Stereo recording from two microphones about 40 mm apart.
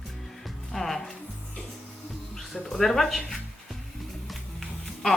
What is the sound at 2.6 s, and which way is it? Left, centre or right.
Speech, centre.